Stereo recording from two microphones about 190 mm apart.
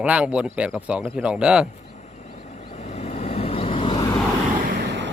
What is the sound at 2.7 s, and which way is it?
Vehicle, 35° left (ahead or behind).